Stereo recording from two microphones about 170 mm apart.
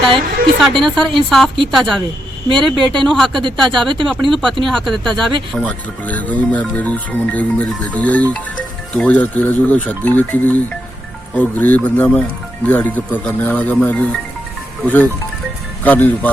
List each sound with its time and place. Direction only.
0.0 s speech: 30° right (ahead or behind)
0.8 s speech: 5° left (ahead or behind)
2.5 s speech: 30° right (ahead or behind)
3.1 s speech: 5° left (ahead or behind)
3.7 s speech: 30° right (ahead or behind)
4.0 s speech: centre (ahead or behind)